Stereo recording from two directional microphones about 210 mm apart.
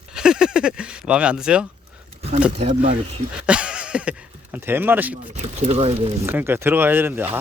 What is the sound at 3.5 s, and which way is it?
Speech, 5° right (ahead or behind).